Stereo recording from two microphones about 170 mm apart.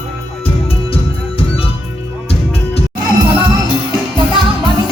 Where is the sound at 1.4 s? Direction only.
35° left (ahead or behind).